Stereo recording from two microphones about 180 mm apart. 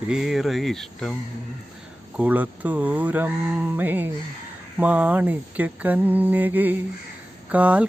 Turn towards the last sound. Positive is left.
turn(degrees=-5)  # may be behind; listen again after turning